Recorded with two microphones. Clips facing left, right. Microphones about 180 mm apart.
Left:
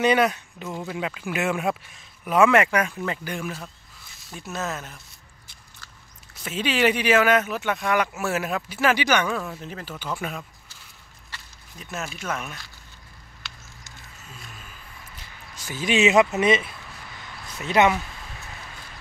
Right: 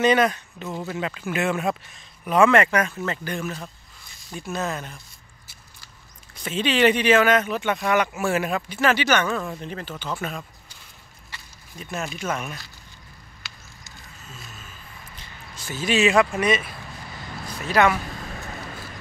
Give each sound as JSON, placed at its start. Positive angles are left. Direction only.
{"t": 0.0, "sound": "speech", "side_deg": 10}
{"t": 6.3, "sound": "speech", "side_deg": 5}
{"t": 11.8, "sound": "speech", "side_deg": 0}
{"t": 13.4, "sound": "a sound", "side_deg": 0}
{"t": 15.1, "sound": "speech", "side_deg": 10}